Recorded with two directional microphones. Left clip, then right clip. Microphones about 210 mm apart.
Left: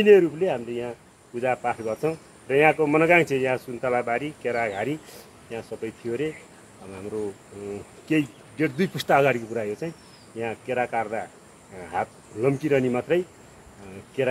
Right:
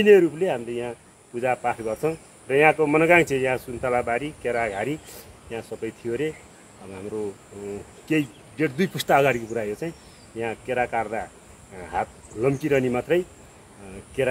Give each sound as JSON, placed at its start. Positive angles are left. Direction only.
{"t": 0.0, "sound": "speech", "side_deg": -20}
{"t": 8.1, "sound": "speech", "side_deg": -15}